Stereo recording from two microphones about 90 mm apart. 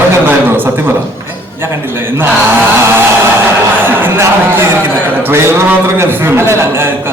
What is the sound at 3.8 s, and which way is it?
A man's voice, 25° right (ahead or behind).